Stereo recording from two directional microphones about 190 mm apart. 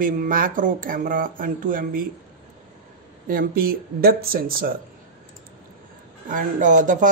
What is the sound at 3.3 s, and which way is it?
Speech, 50° right (ahead or behind).